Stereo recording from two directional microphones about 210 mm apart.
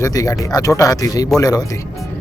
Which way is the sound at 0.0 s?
15° left (ahead or behind).